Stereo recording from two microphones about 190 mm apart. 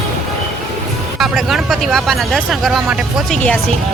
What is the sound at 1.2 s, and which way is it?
Speech, centre (ahead or behind).